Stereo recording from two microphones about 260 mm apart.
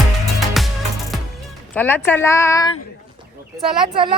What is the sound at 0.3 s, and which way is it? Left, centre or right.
Music, centre.